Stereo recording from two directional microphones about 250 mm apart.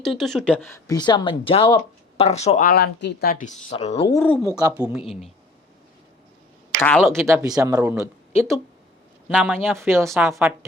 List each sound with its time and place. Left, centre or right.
0.0 s speech: centre
0.7 s speech: centre
4.1 s speech: centre
4.4 s speech: centre
6.7 s speech: centre
7.1 s speech: centre
9.3 s speech: centre
9.7 s speech: centre